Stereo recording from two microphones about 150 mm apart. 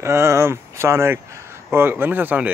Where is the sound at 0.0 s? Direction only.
20° right (ahead or behind).